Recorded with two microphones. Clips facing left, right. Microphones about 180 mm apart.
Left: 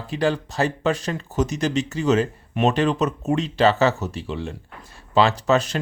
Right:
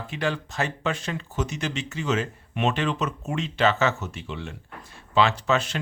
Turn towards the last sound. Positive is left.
turn(degrees=40)  # may be behind; listen again after turning